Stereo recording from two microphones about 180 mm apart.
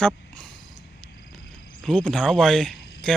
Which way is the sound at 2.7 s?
70° left (ahead or behind).